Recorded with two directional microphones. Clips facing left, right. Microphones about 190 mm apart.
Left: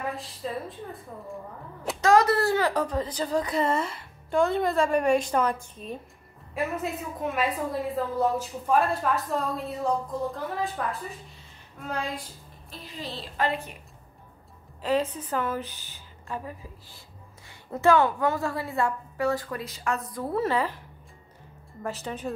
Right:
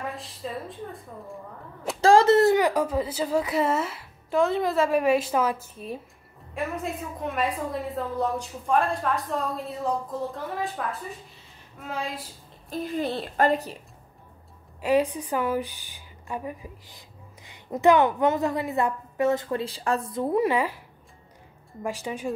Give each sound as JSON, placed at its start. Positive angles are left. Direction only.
{"t": 0.1, "sound": "a woman's voice", "side_deg": 0}
{"t": 2.0, "sound": "a woman's voice", "side_deg": -30}
{"t": 12.6, "sound": "speech", "side_deg": -50}
{"t": 13.5, "sound": "a woman's voice", "side_deg": -40}
{"t": 14.8, "sound": "a woman's voice", "side_deg": -15}
{"t": 21.8, "sound": "a woman's voice", "side_deg": -10}